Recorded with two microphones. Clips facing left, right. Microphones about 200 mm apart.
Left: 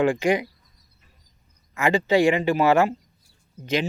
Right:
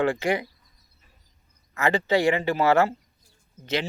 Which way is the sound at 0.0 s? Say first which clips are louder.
Left 3 dB; 15° left (ahead or behind).